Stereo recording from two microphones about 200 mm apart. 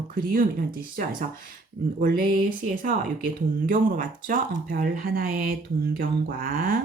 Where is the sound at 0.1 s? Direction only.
45° right (ahead or behind).